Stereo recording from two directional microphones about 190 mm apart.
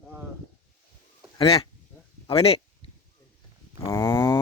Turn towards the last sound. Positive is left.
turn(degrees=15)  # may be behind; listen again after turning